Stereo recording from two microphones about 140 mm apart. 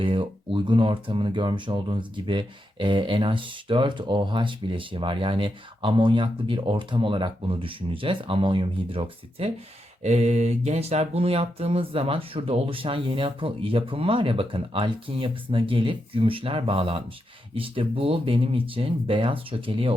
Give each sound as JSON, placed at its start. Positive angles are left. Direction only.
{"t": 0.0, "sound": "speech", "side_deg": -35}
{"t": 10.0, "sound": "speech", "side_deg": -50}